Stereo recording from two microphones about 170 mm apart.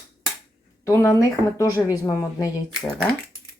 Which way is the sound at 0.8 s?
15° left (ahead or behind).